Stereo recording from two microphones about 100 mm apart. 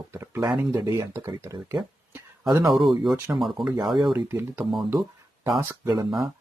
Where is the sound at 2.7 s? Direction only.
Centre (ahead or behind).